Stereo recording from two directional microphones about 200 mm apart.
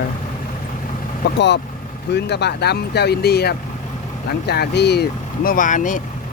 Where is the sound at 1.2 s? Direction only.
55° left (ahead or behind).